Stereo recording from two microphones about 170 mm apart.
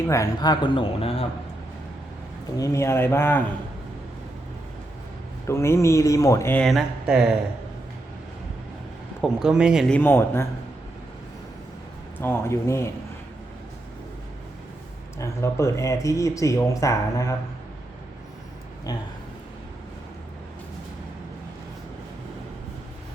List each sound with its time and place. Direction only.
0.1 s speech: 20° left (ahead or behind)
2.6 s speech: 15° left (ahead or behind)
5.5 s speech: 15° left (ahead or behind)
6.7 s speech: centre (ahead or behind)
9.2 s speech: 5° right (ahead or behind)
9.9 s speech: 10° left (ahead or behind)
12.2 s speech: 15° left (ahead or behind)
15.2 s speech: 15° left (ahead or behind)
18.9 s speech: 20° left (ahead or behind)